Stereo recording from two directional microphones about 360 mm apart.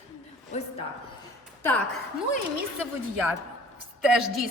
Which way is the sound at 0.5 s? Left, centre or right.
Centre.